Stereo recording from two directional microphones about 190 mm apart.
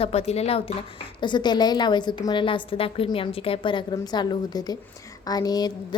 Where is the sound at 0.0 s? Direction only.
35° left (ahead or behind).